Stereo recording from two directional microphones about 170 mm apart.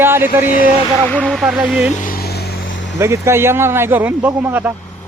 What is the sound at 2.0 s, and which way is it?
Vehicle, 60° left (ahead or behind).